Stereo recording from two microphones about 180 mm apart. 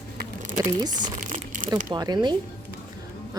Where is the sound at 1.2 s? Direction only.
45° right (ahead or behind).